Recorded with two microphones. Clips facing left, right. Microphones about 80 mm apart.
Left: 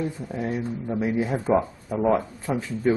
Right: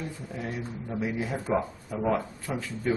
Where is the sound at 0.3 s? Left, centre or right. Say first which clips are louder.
Left 7 dB; left.